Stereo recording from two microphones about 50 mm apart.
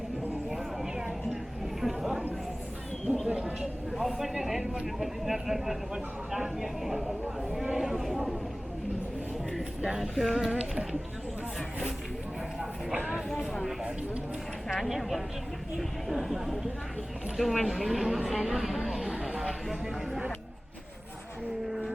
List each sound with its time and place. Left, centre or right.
0.5 s a sound: centre
3.2 s a sound: centre
4.0 s speech: centre
9.8 s speech: centre
10.5 s speech: centre
14.7 s speech: centre
19.1 s a sound: centre
19.4 s speech: centre
21.7 s music: centre